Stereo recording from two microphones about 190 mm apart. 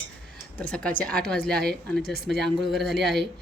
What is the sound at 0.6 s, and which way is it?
Speech, 5° left (ahead or behind).